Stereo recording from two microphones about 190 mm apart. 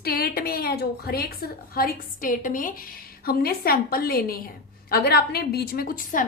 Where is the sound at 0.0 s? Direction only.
55° left (ahead or behind).